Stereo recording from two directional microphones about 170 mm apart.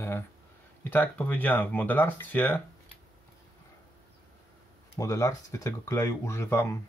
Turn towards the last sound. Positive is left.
turn(degrees=15)  # may be behind; listen again after turning